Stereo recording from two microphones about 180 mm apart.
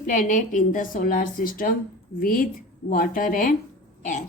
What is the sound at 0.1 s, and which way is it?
A woman's voice, 45° left (ahead or behind).